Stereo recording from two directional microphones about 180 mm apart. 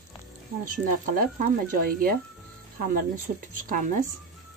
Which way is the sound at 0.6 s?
50° right (ahead or behind).